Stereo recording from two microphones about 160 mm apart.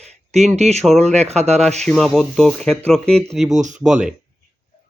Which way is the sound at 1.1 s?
45° right (ahead or behind).